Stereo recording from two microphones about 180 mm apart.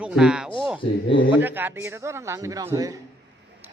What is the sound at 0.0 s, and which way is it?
A man's voice, 5° right (ahead or behind).